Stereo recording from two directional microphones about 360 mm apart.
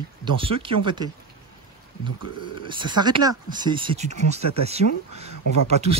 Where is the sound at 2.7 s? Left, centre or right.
Centre.